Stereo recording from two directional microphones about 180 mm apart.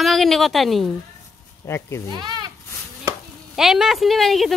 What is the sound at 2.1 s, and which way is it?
Speech, 25° right (ahead or behind).